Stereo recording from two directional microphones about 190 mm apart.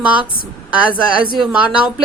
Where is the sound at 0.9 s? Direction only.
25° right (ahead or behind).